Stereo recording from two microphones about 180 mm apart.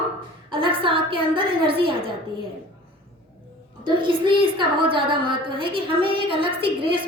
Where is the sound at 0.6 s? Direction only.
30° right (ahead or behind).